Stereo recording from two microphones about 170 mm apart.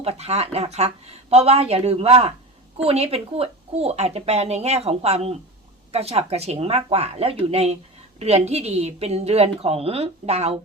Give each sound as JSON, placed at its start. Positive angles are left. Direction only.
{"t": 0.0, "sound": "speech", "side_deg": -35}